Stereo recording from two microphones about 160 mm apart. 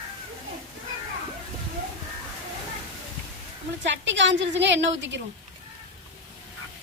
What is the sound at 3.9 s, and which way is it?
A woman's voice, 90° right.